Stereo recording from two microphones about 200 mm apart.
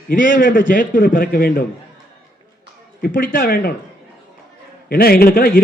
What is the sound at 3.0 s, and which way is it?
Speech, 45° left (ahead or behind).